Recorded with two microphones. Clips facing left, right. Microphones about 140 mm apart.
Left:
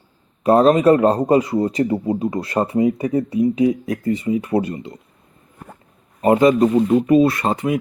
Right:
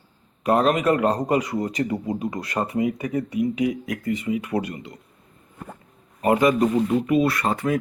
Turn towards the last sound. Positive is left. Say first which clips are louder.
# left 3 dB
turn(degrees=20)  # may be behind; listen again after turning